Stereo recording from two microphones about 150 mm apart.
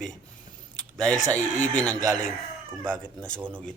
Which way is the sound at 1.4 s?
55° left (ahead or behind).